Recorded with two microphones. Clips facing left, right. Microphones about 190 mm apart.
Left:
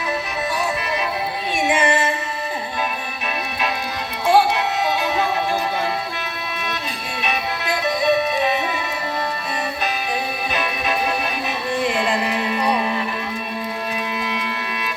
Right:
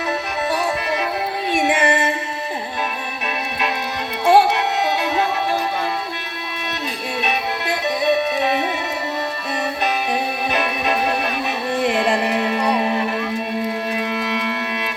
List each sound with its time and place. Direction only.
1.5 s music: 65° right (ahead or behind)
4.3 s music: 65° right (ahead or behind)
10.5 s music: 65° right (ahead or behind)